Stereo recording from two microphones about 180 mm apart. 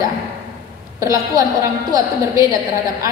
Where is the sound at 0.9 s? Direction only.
20° right (ahead or behind).